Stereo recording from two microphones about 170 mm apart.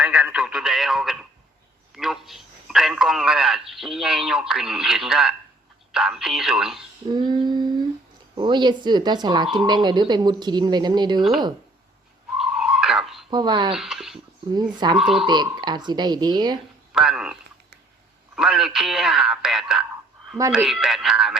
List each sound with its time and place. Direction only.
0.0 s radio: 5° right (ahead or behind)
2.0 s speech: centre (ahead or behind)
7.1 s a sound: 25° right (ahead or behind)
8.4 s speech: 25° right (ahead or behind)
12.4 s a sound: 5° right (ahead or behind)
13.3 s speech: 25° right (ahead or behind)
13.7 s speech: 5° right (ahead or behind)
14.5 s speech: 25° right (ahead or behind)
14.9 s speech: 5° right (ahead or behind)
15.3 s speech: 25° right (ahead or behind)
16.9 s speech: 5° right (ahead or behind)
18.3 s speech: centre (ahead or behind)